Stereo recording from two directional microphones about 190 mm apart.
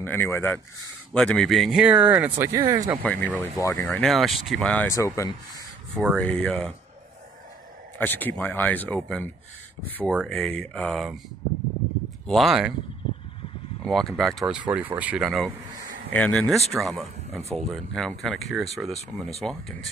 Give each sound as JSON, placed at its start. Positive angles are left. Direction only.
{"t": 0.0, "sound": "speech", "side_deg": 10}
{"t": 3.0, "sound": "speech", "side_deg": 10}
{"t": 5.9, "sound": "speech", "side_deg": 5}
{"t": 8.0, "sound": "speech", "side_deg": 10}
{"t": 12.3, "sound": "speech", "side_deg": 0}
{"t": 13.8, "sound": "speech", "side_deg": 0}
{"t": 17.3, "sound": "speech", "side_deg": -35}
{"t": 17.6, "sound": "speech", "side_deg": 0}